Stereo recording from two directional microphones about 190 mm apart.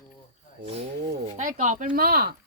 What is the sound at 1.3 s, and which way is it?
Speech, 45° right (ahead or behind).